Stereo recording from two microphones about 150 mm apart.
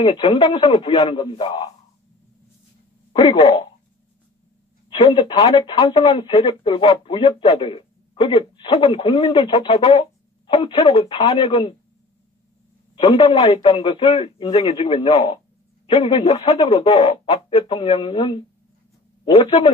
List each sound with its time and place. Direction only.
0.3 s speech: 30° left (ahead or behind)
1.1 s speech: 30° left (ahead or behind)
3.1 s speech: 35° left (ahead or behind)
4.8 s speech: 30° left (ahead or behind)
13.2 s a man's voice: 35° left (ahead or behind)
15.9 s speech: 35° left (ahead or behind)
16.5 s a man's voice: 30° left (ahead or behind)